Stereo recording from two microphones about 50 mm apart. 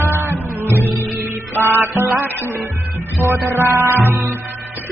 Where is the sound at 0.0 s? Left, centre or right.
Right.